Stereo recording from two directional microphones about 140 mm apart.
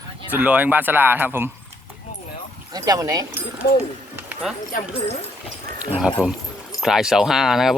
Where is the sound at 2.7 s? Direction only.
25° right (ahead or behind).